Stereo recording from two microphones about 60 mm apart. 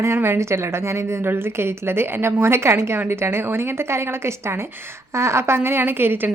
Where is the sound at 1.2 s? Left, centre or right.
Right.